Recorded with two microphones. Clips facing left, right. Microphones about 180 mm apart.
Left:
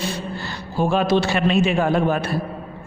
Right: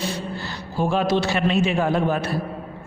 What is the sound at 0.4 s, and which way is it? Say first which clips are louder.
A man's voice: left 3 dB; 60° left (ahead or behind).